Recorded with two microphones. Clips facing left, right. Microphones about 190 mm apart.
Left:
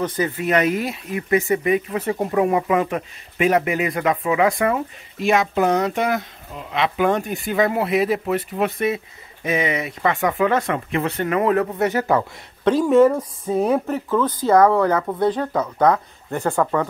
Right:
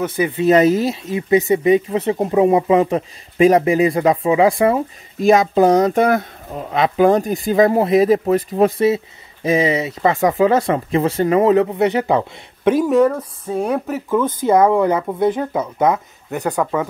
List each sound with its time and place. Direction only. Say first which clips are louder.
0.0 s speech: right 3 dB; 10° right (ahead or behind)
0.4 s speech: right 8 dB; 30° right (ahead or behind); by 12.9 s 15° right (ahead or behind)
12.9 s speech: left 1 dB; 5° left (ahead or behind)
14.5 s speech: right 1 dB; 20° right (ahead or behind)